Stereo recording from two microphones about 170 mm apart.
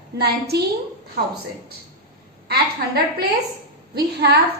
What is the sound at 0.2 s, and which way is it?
Speech, 70° right (ahead or behind).